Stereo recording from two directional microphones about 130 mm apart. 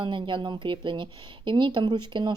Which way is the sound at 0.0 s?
40° right (ahead or behind).